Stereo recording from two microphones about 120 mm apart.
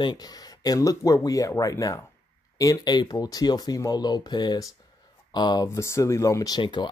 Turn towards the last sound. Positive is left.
turn(degrees=40)  # may be behind; listen again after turning